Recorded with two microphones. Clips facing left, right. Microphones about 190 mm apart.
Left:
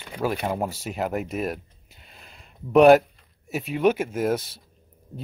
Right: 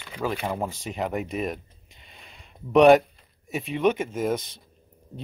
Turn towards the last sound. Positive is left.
turn(degrees=5)  # may be behind; listen again after turning